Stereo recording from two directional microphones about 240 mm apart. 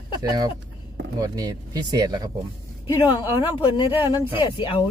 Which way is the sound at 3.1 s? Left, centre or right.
Centre.